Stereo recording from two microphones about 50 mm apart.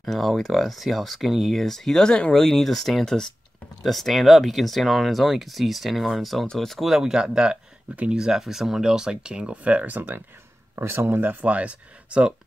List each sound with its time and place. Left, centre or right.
0.0 s speech: centre
6.9 s speech: centre
7.9 s speech: right
8.2 s speech: centre; by 10.0 s right
10.8 s speech: right
11.4 s speech: right